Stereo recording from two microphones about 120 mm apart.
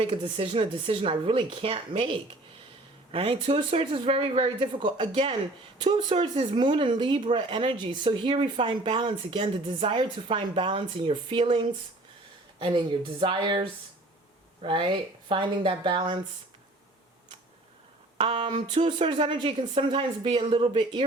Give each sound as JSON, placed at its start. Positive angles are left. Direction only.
{"t": 0.0, "sound": "speech", "side_deg": -50}
{"t": 6.3, "sound": "speech", "side_deg": -40}
{"t": 18.2, "sound": "a sound", "side_deg": -55}
{"t": 18.5, "sound": "speech", "side_deg": -40}